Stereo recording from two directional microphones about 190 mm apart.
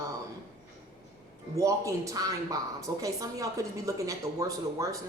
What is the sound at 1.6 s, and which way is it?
A woman's voice, 15° right (ahead or behind).